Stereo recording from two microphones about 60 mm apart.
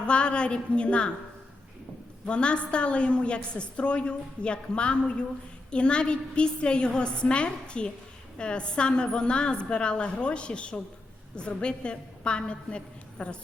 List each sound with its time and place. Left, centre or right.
0.1 s a woman's voice: centre
2.2 s a woman's voice: centre